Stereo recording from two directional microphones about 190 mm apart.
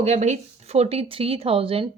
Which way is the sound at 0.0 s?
35° right (ahead or behind).